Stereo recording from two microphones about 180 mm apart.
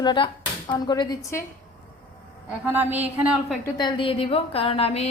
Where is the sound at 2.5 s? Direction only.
5° right (ahead or behind).